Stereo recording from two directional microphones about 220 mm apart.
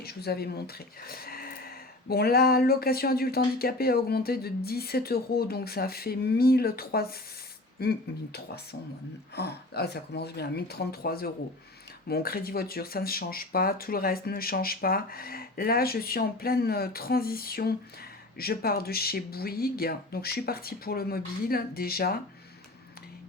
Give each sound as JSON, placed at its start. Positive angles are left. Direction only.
{"t": 0.0, "sound": "speech", "side_deg": 45}